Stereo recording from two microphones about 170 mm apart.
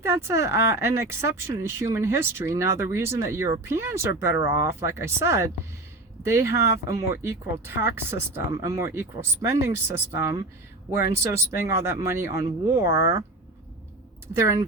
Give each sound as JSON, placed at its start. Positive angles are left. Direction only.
{"t": 0.0, "sound": "speech", "side_deg": -15}
{"t": 14.3, "sound": "speech", "side_deg": -15}